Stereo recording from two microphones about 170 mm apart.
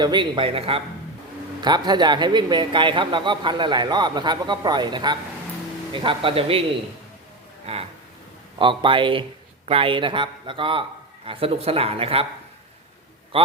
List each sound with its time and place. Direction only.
0.0 s speech: 25° right (ahead or behind)
7.7 s a sound: 35° right (ahead or behind)
8.5 s speech: 30° right (ahead or behind)
13.3 s a man's voice: 30° right (ahead or behind)